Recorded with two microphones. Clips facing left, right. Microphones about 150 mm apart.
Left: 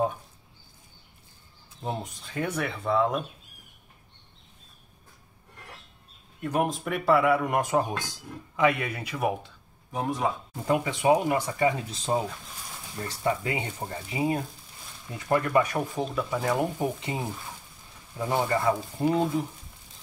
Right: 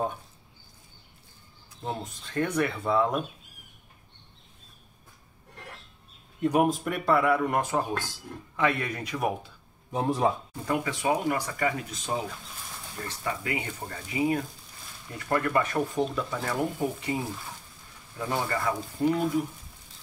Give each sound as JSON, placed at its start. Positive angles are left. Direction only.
{"t": 1.8, "sound": "speech", "side_deg": 15}
{"t": 2.2, "sound": "speech", "side_deg": 5}
{"t": 6.4, "sound": "speech", "side_deg": -10}
{"t": 6.7, "sound": "speech", "side_deg": 0}
{"t": 9.9, "sound": "a man's voice", "side_deg": -30}
{"t": 10.6, "sound": "speech", "side_deg": 20}
{"t": 13.2, "sound": "speech", "side_deg": 30}
{"t": 15.1, "sound": "speech", "side_deg": 15}